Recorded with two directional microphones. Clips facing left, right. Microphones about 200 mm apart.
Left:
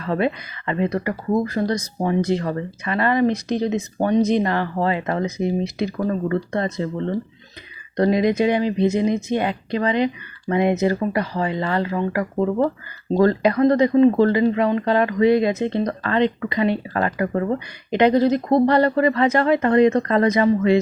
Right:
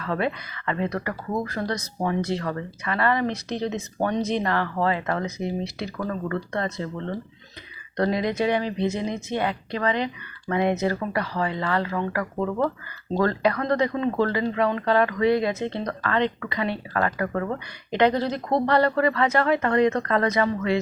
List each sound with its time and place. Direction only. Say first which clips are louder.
0.0 s speech: left 5 dB; 25° left (ahead or behind)
7.9 s speech: left 6 dB; 15° left (ahead or behind)